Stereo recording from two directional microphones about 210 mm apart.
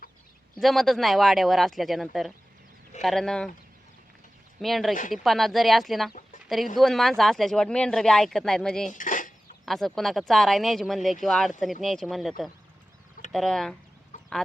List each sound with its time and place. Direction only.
0.6 s speech: centre (ahead or behind)
4.6 s speech: centre (ahead or behind)
8.9 s cutlery: 40° left (ahead or behind)
9.6 s speech: centre (ahead or behind)
13.3 s speech: centre (ahead or behind)
14.1 s chicken: 35° left (ahead or behind)